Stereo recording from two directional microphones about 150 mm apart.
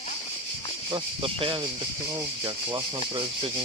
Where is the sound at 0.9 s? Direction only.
35° right (ahead or behind).